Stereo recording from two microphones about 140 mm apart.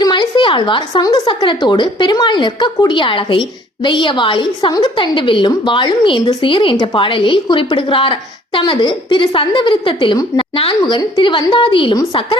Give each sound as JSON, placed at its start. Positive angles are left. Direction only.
{"t": 0.0, "sound": "a woman's voice", "side_deg": 35}